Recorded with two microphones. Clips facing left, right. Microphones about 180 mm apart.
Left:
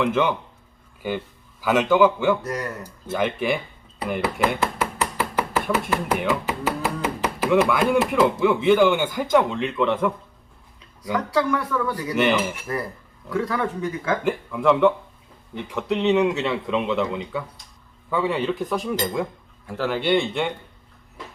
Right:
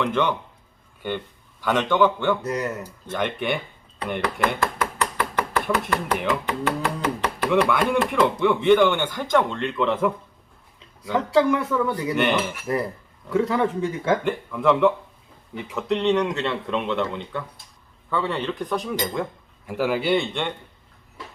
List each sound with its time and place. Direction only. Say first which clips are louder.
0.0 s speech: left 2 dB; 5° left (ahead or behind)
2.4 s speech: right 2 dB; 20° right (ahead or behind)
2.8 s speech: left 2 dB; 5° left (ahead or behind)
11.1 s speech: right 3 dB; 25° right (ahead or behind)
12.1 s speech: left 3 dB; centre (ahead or behind)
13.3 s speech: right 3 dB; 25° right (ahead or behind)
14.3 s speech: left 1 dB; centre (ahead or behind)
19.6 s speech: right 1 dB; 10° right (ahead or behind)